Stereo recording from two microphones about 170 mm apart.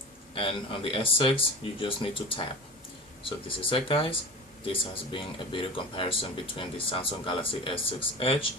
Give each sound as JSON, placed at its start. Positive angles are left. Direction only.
{"t": 0.3, "sound": "speech", "side_deg": 30}